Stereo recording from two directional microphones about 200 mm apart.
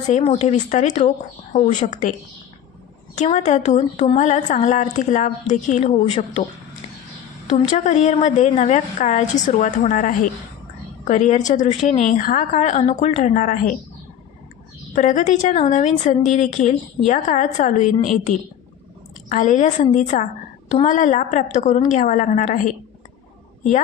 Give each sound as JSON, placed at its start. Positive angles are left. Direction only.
{"t": 0.1, "sound": "a woman's voice", "side_deg": 30}
{"t": 3.2, "sound": "a woman's voice", "side_deg": 35}
{"t": 7.7, "sound": "a woman's voice", "side_deg": 35}
{"t": 15.0, "sound": "a woman's voice", "side_deg": 40}